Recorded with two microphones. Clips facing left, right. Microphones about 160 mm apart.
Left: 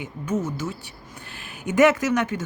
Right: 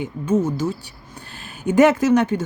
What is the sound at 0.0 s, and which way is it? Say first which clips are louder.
Speech: right 6 dB; 30° right (ahead or behind).